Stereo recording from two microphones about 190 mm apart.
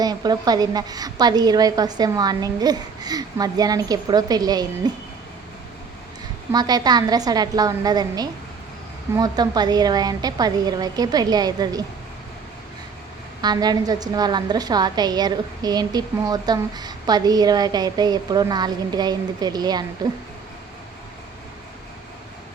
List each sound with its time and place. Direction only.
0.0 s a woman's voice: 20° right (ahead or behind)
6.5 s a woman's voice: 20° right (ahead or behind)
13.4 s a woman's voice: 20° right (ahead or behind)